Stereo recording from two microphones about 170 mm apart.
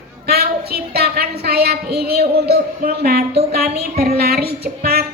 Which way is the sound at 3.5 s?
65° right (ahead or behind).